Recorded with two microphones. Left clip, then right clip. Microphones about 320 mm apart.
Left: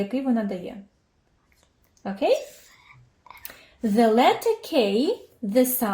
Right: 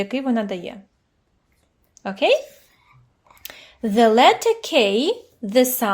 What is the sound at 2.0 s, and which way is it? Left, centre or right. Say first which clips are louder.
Speech: right 5 dB; right.